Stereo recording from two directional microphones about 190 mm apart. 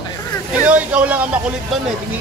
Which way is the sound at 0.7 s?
5° right (ahead or behind).